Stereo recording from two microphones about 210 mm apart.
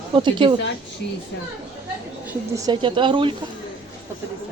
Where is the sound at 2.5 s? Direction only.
20° right (ahead or behind).